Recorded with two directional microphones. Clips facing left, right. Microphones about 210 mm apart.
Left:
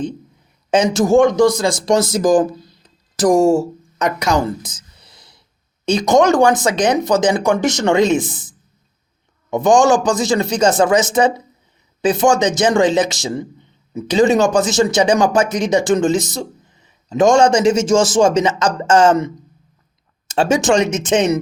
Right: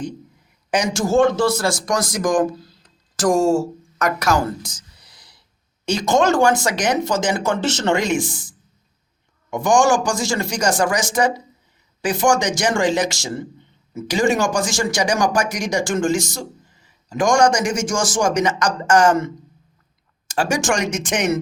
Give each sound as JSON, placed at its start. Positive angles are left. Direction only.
{"t": 0.7, "sound": "speech", "side_deg": 20}